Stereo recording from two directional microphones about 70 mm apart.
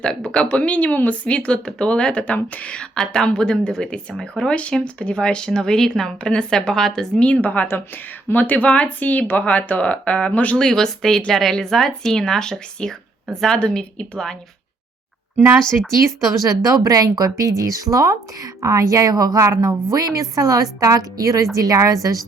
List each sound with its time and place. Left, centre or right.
0.0 s speech: centre
10.7 s speech: centre
16.6 s a woman's voice: right